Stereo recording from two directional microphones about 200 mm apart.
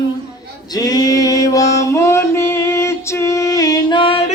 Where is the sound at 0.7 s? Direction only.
20° left (ahead or behind).